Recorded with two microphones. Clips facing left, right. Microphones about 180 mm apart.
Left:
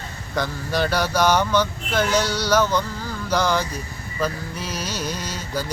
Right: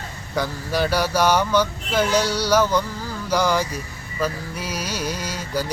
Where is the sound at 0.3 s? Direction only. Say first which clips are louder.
Right 1 dB; 10° right (ahead or behind).